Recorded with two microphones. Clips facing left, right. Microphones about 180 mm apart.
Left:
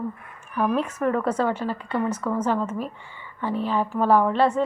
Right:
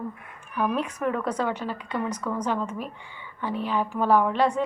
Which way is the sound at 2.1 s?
10° left (ahead or behind).